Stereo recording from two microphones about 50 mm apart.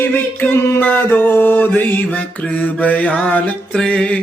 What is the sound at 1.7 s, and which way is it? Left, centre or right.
Mantra, left.